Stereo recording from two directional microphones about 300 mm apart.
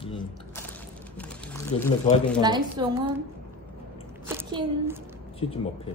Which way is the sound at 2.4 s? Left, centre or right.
Centre.